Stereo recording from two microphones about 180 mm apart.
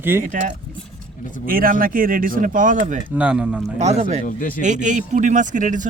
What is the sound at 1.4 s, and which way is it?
A man's voice, 55° right (ahead or behind).